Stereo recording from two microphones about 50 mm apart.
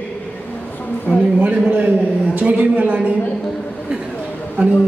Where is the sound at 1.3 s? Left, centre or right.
Right.